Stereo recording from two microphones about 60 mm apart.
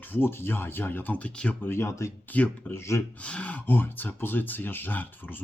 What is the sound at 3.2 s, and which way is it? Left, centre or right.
Speech, left.